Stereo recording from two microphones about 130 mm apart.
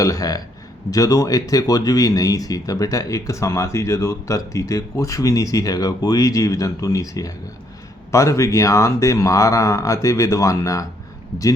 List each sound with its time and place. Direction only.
0.0 s speech: 25° left (ahead or behind)